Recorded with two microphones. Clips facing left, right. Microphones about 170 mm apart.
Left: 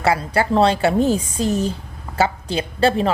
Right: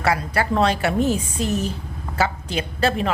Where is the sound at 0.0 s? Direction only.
25° left (ahead or behind).